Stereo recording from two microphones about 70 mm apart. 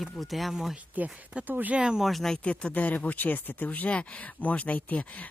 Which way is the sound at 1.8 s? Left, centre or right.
Centre.